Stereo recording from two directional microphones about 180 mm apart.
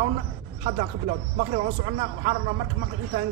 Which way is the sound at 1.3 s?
35° right (ahead or behind).